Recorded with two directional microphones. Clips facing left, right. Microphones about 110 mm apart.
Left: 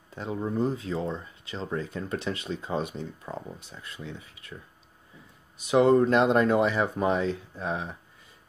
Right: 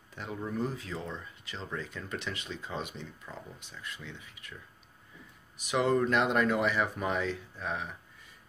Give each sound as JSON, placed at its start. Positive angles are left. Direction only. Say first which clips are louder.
{"t": 0.1, "sound": "speech", "louder": "left 6 dB", "side_deg": 30}
{"t": 5.7, "sound": "speech", "louder": "left 7 dB", "side_deg": 30}